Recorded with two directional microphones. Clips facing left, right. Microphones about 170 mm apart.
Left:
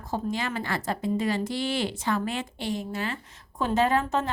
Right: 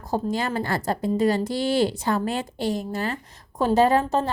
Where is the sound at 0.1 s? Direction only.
40° right (ahead or behind).